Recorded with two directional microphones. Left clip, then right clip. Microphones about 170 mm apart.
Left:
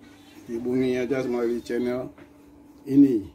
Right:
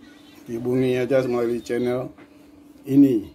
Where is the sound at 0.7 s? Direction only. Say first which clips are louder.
Right 4 dB; 30° right (ahead or behind).